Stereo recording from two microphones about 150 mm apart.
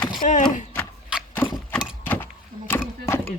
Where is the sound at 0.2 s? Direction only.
60° left (ahead or behind).